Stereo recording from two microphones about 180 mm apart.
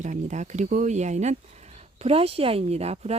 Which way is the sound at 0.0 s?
40° right (ahead or behind).